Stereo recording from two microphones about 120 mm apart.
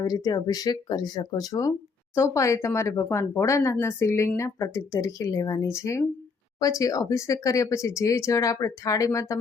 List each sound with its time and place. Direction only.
0.0 s speech: 35° left (ahead or behind)